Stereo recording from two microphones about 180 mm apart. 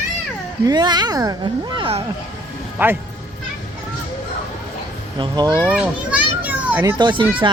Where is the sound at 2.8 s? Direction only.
10° right (ahead or behind).